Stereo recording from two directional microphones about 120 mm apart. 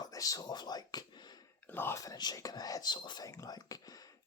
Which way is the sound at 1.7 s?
20° left (ahead or behind).